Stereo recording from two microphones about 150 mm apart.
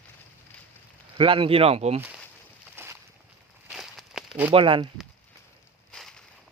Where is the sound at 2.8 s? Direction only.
15° right (ahead or behind).